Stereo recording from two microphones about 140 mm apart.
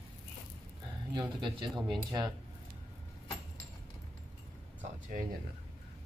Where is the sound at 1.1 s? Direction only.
35° right (ahead or behind).